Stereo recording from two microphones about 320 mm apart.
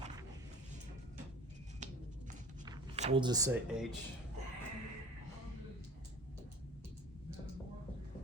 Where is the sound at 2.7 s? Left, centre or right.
Centre.